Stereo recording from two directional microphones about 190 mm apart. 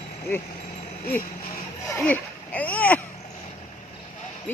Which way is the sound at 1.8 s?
10° left (ahead or behind).